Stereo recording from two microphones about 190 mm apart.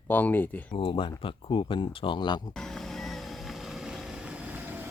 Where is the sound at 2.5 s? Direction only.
Centre (ahead or behind).